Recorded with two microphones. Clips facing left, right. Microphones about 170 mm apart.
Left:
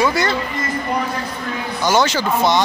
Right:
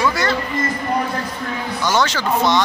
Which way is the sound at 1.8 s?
10° left (ahead or behind).